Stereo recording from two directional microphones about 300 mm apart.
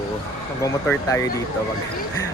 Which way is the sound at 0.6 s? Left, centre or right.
Centre.